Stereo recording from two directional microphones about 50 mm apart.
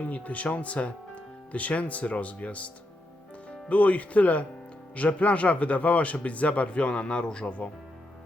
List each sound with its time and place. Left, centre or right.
0.0 s speech: left
3.7 s speech: left